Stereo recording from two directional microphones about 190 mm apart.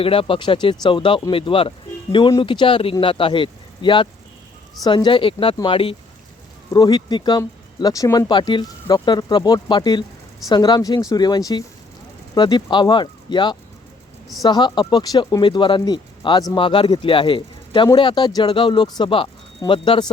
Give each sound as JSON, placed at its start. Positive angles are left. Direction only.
{"t": 0.0, "sound": "speech", "side_deg": 30}